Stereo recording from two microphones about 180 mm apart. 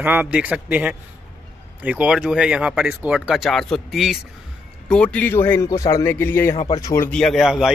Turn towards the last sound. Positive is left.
turn(degrees=0)  # may be behind; listen again after turning